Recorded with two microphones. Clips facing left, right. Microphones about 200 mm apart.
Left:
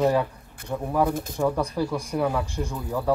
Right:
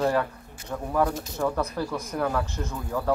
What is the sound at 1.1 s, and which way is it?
Speech, 55° left (ahead or behind).